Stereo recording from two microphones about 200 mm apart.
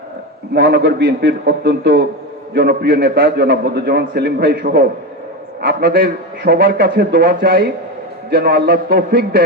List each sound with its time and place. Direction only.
0.5 s a man's voice: 60° right (ahead or behind)
5.6 s a man's voice: 45° right (ahead or behind)